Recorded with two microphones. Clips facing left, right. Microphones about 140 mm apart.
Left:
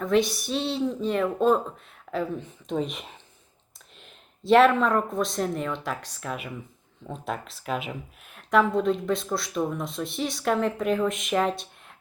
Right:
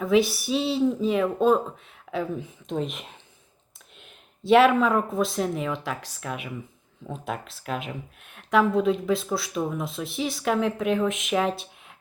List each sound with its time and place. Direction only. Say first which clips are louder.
0.0 s speech: right 2 dB; 5° right (ahead or behind)